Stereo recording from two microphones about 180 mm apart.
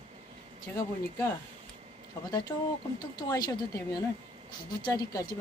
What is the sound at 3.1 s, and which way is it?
Speech, 20° left (ahead or behind).